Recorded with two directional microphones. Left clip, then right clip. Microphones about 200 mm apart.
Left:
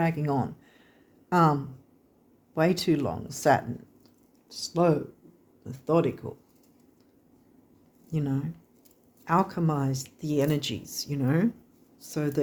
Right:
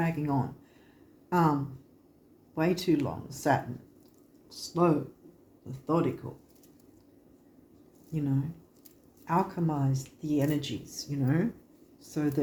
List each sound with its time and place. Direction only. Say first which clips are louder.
0.0 s speech: left 3 dB; 50° left (ahead or behind)
2.6 s speech: left 3 dB; 50° left (ahead or behind)
4.4 s speech: left 2 dB; 40° left (ahead or behind)
8.1 s speech: left 1 dB; 55° left (ahead or behind)